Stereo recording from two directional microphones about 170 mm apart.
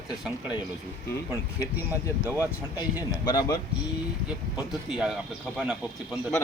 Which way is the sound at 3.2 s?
20° left (ahead or behind).